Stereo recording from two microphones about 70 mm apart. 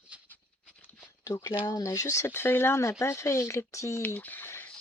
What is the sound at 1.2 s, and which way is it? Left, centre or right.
Speech, left.